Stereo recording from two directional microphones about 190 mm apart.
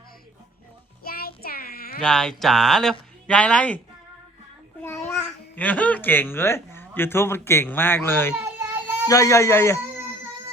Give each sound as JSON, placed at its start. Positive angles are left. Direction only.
{"t": 1.0, "sound": "child singing", "side_deg": 50}
{"t": 2.0, "sound": "speech", "side_deg": 5}
{"t": 5.5, "sound": "a man's voice", "side_deg": 10}
{"t": 8.5, "sound": "children playing", "side_deg": -10}
{"t": 9.0, "sound": "a man's voice", "side_deg": 20}